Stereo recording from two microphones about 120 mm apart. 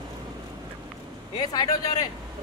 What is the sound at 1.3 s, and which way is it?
Speech, 35° left (ahead or behind).